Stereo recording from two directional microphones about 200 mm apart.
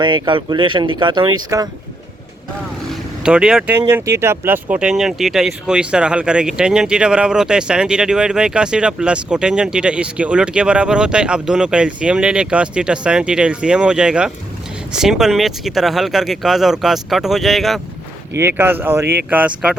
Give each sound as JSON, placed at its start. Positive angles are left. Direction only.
{"t": 0.0, "sound": "speech", "side_deg": -25}
{"t": 2.9, "sound": "speech", "side_deg": -5}
{"t": 18.3, "sound": "speech", "side_deg": -10}